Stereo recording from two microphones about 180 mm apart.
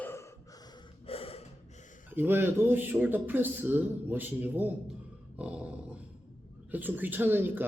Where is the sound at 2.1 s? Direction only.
10° right (ahead or behind).